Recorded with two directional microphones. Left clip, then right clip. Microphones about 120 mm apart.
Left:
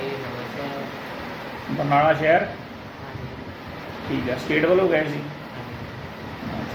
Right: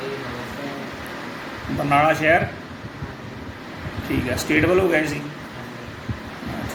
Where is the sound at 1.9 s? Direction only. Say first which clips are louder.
Right 1 dB; 10° right (ahead or behind).